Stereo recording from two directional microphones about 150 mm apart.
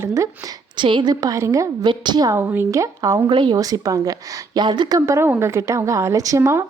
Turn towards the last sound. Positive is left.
turn(degrees=-20)  # may be behind; listen again after turning